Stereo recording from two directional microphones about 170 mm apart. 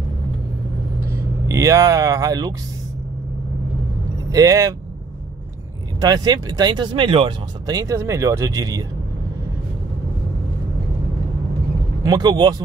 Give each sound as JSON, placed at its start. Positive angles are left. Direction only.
{"t": 1.5, "sound": "speech", "side_deg": -20}
{"t": 4.3, "sound": "speech", "side_deg": -20}
{"t": 5.9, "sound": "speech", "side_deg": -20}
{"t": 12.0, "sound": "speech", "side_deg": -25}